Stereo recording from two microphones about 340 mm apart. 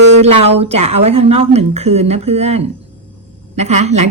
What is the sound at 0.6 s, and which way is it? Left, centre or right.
A woman's voice, centre.